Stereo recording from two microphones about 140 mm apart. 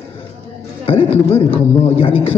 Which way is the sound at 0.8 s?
40° left (ahead or behind).